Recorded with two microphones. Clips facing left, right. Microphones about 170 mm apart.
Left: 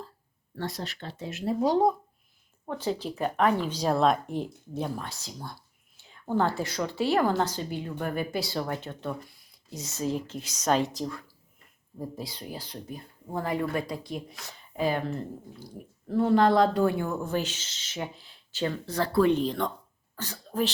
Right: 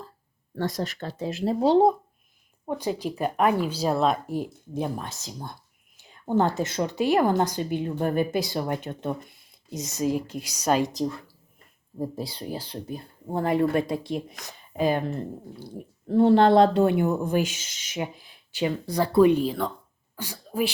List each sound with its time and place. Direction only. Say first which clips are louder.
0.7 s speech: right 6 dB; 45° right (ahead or behind); by 2.0 s 25° right (ahead or behind)
2.6 s a woman's voice: right 3 dB; 15° right (ahead or behind)
11.9 s a woman's voice: right 5 dB; 30° right (ahead or behind); by 20.7 s 10° right (ahead or behind)